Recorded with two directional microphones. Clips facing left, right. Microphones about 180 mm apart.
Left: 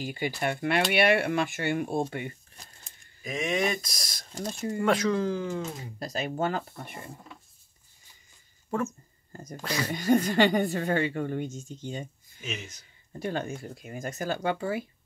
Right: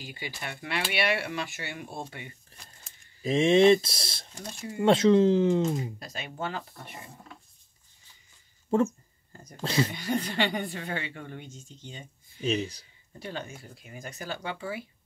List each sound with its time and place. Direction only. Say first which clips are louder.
0.0 s a woman's voice: left 9 dB; 50° left (ahead or behind)
3.2 s speech: right 8 dB; 30° right (ahead or behind)
5.9 s speech: left 7 dB; 40° left (ahead or behind)
8.7 s speech: right 6 dB; 25° right (ahead or behind)
9.3 s speech: left 8 dB; 45° left (ahead or behind)
9.6 s speech: right 5 dB; 25° right (ahead or behind)
9.8 s a woman's voice: left 7 dB; 45° left (ahead or behind)
12.4 s speech: right 10 dB; 35° right (ahead or behind)
13.2 s a woman's voice: left 6 dB; 50° left (ahead or behind)